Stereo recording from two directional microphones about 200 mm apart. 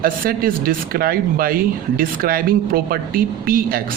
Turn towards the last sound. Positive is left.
turn(degrees=-45)  # may be behind; listen again after turning